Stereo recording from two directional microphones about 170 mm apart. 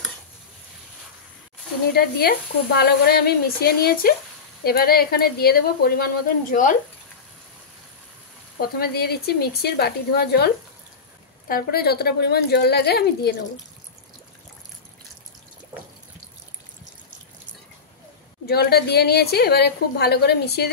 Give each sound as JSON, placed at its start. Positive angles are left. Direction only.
{"t": 2.0, "sound": "speech", "side_deg": 65}
{"t": 8.5, "sound": "a woman's voice", "side_deg": 60}
{"t": 18.5, "sound": "a woman's voice", "side_deg": 65}